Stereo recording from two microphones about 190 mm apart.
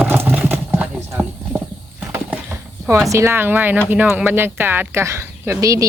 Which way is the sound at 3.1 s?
15° right (ahead or behind).